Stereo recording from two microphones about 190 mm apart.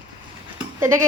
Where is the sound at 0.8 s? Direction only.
15° right (ahead or behind).